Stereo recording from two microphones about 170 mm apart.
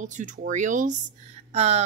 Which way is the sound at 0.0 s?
45° right (ahead or behind).